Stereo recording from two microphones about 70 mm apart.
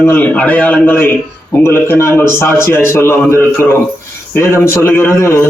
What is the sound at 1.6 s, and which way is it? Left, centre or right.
A man's voice, left.